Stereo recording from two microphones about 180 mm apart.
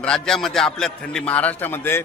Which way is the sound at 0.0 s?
5° left (ahead or behind).